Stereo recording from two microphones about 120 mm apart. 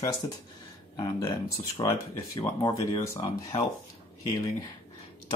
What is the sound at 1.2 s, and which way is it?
Speech, 30° left (ahead or behind).